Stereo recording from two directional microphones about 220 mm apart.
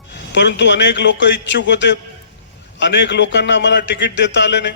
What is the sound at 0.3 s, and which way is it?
A man's voice, 50° left (ahead or behind).